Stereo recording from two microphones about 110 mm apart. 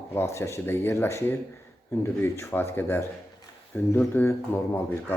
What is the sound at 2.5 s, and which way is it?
Speech, 20° left (ahead or behind).